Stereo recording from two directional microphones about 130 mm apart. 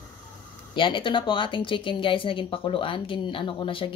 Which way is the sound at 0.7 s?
40° left (ahead or behind).